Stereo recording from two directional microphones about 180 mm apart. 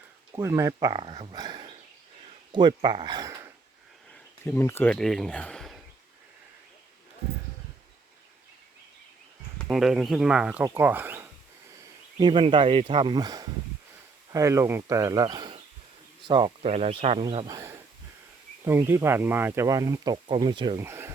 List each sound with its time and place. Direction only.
0.3 s speech: 15° right (ahead or behind)
4.4 s speech: 10° left (ahead or behind)
9.6 s speech: centre (ahead or behind)
12.2 s speech: 30° right (ahead or behind)
17.4 s speech: 15° right (ahead or behind)